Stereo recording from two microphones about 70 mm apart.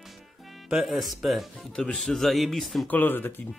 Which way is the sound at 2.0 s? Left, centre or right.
Centre.